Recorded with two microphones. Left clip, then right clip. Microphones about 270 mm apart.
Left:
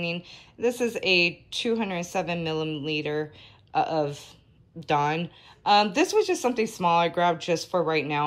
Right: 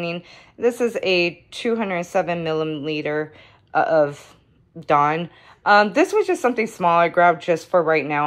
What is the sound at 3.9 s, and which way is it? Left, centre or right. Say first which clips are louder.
Speech: right 9 dB; centre.